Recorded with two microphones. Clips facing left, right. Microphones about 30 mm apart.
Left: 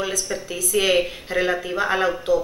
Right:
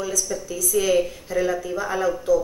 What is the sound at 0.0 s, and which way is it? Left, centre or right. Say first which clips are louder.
Speech: left 1 dB; left.